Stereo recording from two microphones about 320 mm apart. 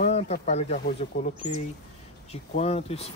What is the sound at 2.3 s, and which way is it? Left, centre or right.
Speech, centre.